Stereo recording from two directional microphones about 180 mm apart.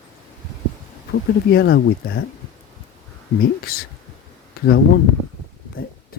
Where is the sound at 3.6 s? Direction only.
55° left (ahead or behind).